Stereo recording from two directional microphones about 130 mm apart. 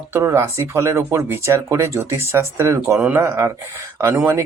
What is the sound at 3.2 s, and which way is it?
Speech, 25° right (ahead or behind).